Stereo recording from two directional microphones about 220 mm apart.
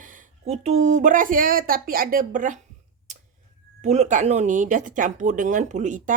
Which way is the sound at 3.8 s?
30° right (ahead or behind).